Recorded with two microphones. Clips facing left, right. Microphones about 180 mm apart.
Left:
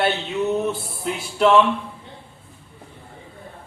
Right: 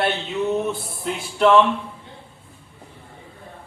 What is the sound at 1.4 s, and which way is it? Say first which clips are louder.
Speech: even; 5° left (ahead or behind).